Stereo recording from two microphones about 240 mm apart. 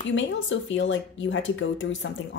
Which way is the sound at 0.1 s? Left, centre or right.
Left.